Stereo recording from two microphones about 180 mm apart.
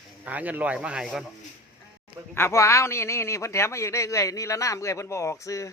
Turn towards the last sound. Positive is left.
turn(degrees=15)  # may be behind; listen again after turning